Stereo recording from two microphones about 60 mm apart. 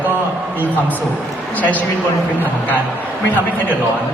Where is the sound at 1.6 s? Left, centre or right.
Left.